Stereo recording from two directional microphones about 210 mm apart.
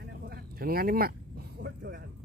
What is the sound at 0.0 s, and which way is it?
Vehicle, 45° right (ahead or behind).